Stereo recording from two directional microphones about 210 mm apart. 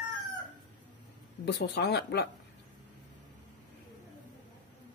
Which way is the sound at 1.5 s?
55° left (ahead or behind).